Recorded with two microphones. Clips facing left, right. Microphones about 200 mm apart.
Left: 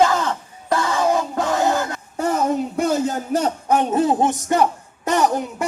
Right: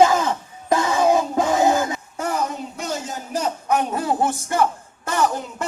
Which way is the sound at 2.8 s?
60° left (ahead or behind).